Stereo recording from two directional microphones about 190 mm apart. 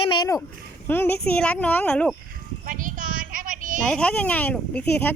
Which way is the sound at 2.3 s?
45° right (ahead or behind).